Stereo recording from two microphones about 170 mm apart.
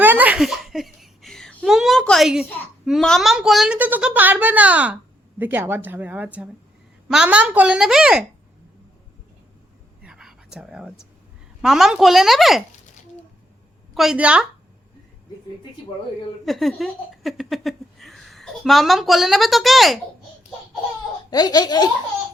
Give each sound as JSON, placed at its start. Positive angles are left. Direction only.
{"t": 0.0, "sound": "a woman's voice", "side_deg": -10}
{"t": 10.0, "sound": "whispering", "side_deg": -5}
{"t": 11.6, "sound": "a woman's voice", "side_deg": 0}
{"t": 13.9, "sound": "a woman's voice", "side_deg": 0}
{"t": 16.5, "sound": "speech", "side_deg": 0}
{"t": 21.2, "sound": "speech", "side_deg": 25}